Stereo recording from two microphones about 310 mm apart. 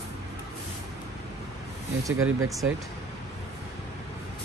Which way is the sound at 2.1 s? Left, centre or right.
Right.